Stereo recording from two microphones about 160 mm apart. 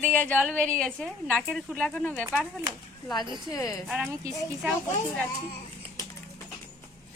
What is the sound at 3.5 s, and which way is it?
Speech, 20° left (ahead or behind).